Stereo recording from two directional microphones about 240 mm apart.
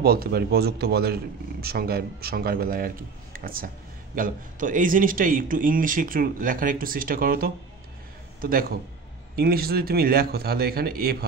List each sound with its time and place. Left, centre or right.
0.0 s a man's voice: right